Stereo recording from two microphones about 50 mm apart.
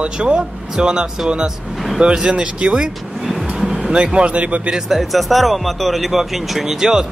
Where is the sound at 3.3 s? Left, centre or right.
Centre.